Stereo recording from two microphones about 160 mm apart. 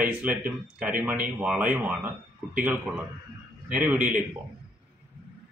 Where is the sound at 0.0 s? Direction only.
10° right (ahead or behind).